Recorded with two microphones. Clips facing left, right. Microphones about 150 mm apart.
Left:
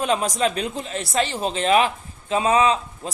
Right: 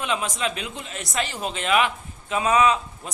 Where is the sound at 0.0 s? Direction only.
40° left (ahead or behind).